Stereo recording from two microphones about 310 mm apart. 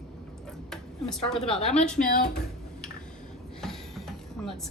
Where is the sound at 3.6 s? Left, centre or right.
Centre.